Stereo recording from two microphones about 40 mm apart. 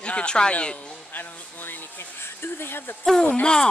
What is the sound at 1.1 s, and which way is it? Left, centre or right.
Speech, left.